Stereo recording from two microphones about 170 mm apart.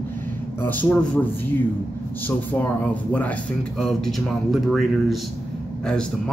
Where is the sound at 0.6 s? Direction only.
10° left (ahead or behind).